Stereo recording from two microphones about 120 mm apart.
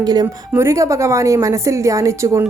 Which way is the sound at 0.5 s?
25° right (ahead or behind).